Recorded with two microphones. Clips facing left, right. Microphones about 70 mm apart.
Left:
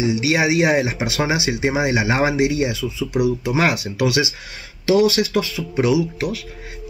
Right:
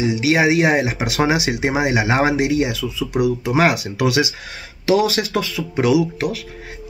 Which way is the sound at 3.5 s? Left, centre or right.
Right.